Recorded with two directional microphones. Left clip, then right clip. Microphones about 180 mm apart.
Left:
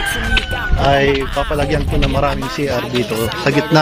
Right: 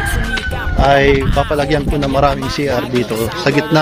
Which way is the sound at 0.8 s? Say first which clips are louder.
Right 3 dB; 25° right (ahead or behind).